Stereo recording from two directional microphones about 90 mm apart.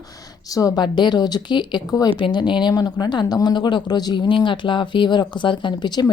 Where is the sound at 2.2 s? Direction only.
60° left (ahead or behind).